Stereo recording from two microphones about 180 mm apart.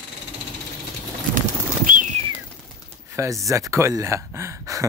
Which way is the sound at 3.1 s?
15° right (ahead or behind).